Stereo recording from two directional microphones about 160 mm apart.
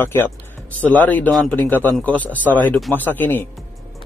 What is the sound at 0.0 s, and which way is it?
Speech, 15° left (ahead or behind).